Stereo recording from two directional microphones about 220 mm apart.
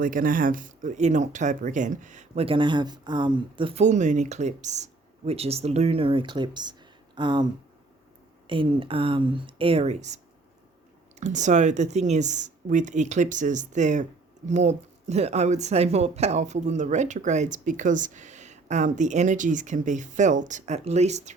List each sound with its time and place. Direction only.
0.0 s speech: 40° right (ahead or behind)
11.2 s speech: 35° right (ahead or behind)